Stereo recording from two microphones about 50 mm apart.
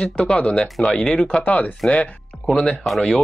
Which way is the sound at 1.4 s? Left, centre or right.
Left.